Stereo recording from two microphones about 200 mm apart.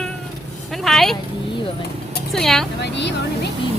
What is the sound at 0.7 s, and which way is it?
Speech, centre (ahead or behind).